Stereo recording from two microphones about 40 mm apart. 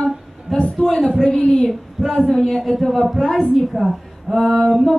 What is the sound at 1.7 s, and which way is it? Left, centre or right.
Speech, centre.